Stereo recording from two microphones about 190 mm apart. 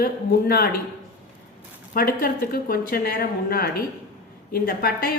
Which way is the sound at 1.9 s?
50° left (ahead or behind).